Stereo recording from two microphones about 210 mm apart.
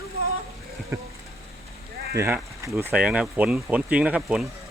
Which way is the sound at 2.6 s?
15° right (ahead or behind).